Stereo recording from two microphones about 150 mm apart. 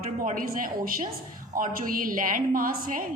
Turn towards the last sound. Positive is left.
turn(degrees=-65)  # may be behind; listen again after turning